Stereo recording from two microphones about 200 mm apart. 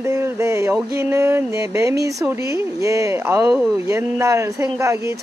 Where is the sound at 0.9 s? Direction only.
15° right (ahead or behind).